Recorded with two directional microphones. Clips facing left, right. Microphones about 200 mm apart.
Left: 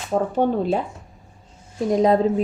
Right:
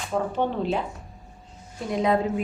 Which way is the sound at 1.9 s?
35° left (ahead or behind).